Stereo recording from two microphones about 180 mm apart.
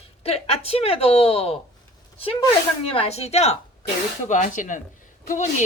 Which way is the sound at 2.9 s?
35° left (ahead or behind).